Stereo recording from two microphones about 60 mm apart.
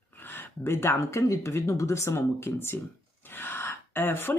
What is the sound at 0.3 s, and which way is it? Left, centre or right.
Speech, left.